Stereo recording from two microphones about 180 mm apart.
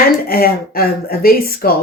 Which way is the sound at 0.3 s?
55° left (ahead or behind).